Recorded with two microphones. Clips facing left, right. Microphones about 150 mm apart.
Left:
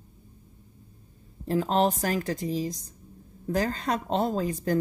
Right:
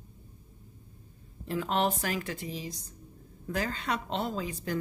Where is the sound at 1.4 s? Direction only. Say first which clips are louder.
Left 5 dB; 35° left (ahead or behind).